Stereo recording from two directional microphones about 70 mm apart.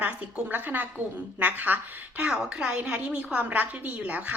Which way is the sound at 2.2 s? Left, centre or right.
Centre.